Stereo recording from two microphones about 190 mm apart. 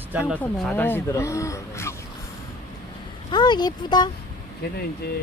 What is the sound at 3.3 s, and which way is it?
Speech, 25° left (ahead or behind).